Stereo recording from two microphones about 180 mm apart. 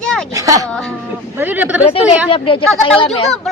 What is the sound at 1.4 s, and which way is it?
Speech, 10° right (ahead or behind).